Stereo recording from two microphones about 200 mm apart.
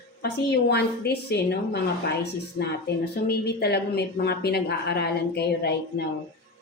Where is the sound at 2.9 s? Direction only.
55° left (ahead or behind).